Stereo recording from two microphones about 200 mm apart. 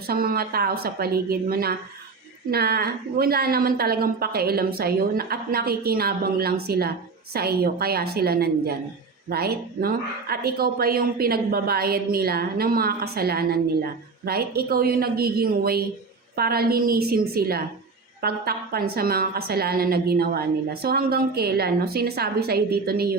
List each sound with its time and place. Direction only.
0.1 s a woman's voice: 50° right (ahead or behind)